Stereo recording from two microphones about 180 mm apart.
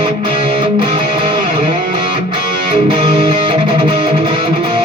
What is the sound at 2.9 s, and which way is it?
Music, 25° right (ahead or behind).